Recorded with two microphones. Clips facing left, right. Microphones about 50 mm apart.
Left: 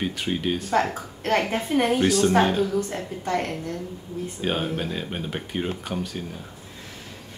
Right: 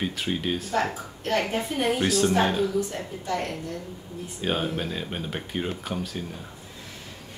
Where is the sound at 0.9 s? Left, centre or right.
Left.